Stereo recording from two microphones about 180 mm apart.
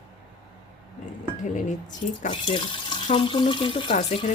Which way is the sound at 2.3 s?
30° left (ahead or behind).